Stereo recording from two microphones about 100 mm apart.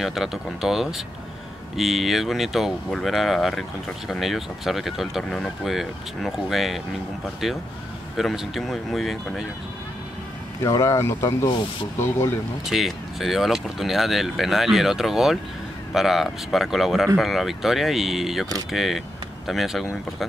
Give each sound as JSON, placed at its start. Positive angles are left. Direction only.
{"t": 0.0, "sound": "speech", "side_deg": -5}
{"t": 10.6, "sound": "speech", "side_deg": 35}
{"t": 12.6, "sound": "speech", "side_deg": 0}